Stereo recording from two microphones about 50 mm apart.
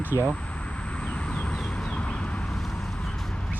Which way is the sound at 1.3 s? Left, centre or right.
Left.